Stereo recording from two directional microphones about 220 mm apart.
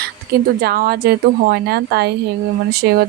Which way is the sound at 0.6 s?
45° right (ahead or behind).